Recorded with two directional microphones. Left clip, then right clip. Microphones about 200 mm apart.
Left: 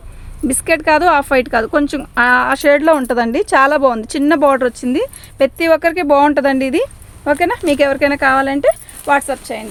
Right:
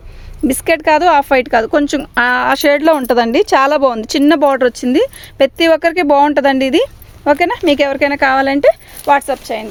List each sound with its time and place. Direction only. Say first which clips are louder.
0.4 s a woman's voice: right 2 dB; 35° right (ahead or behind)